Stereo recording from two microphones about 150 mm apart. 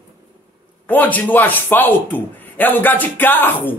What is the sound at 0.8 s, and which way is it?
A man's voice, 10° left (ahead or behind).